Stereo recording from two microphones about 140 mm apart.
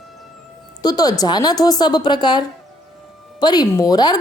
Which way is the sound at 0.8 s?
30° left (ahead or behind).